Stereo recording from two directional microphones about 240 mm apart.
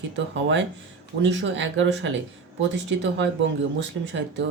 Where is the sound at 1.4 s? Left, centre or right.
Right.